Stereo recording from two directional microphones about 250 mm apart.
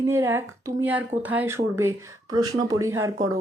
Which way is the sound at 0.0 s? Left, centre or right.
Centre.